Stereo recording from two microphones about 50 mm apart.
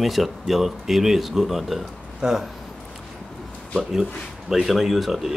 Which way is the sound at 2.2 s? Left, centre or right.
Centre.